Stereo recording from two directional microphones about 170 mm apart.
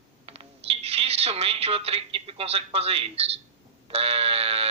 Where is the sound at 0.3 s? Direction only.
35° right (ahead or behind).